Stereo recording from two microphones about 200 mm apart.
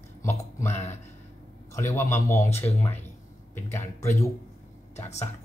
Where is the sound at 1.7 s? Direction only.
10° left (ahead or behind).